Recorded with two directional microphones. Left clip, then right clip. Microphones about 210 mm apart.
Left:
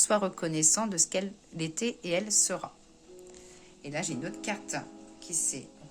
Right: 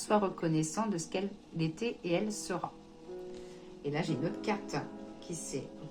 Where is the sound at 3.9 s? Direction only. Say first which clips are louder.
Right 1 dB; 45° left (ahead or behind).